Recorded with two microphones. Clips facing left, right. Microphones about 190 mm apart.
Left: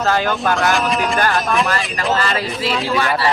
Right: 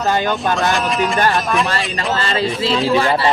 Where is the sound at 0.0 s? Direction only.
20° right (ahead or behind).